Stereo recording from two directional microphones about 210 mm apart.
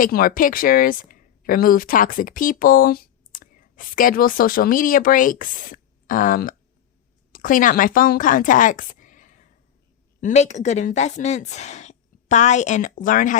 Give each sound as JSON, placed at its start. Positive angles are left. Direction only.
{"t": 0.0, "sound": "a woman's voice", "side_deg": 45}